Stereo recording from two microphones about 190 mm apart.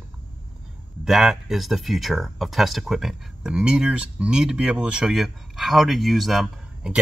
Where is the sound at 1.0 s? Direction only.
Centre (ahead or behind).